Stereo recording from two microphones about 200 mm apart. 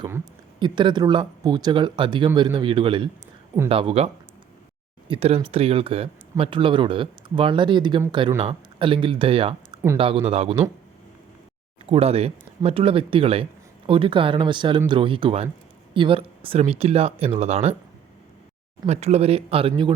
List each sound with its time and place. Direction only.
0.6 s speech: 25° right (ahead or behind)
11.9 s speech: 30° right (ahead or behind)
18.9 s speech: 30° right (ahead or behind)